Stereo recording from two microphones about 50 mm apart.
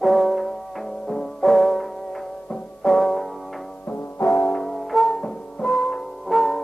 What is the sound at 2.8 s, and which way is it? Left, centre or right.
Music, centre.